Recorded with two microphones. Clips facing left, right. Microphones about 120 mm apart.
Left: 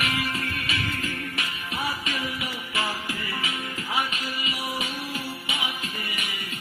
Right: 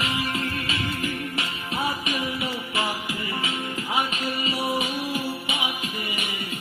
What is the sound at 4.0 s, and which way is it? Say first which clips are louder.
Music: right 3 dB; 30° right (ahead or behind).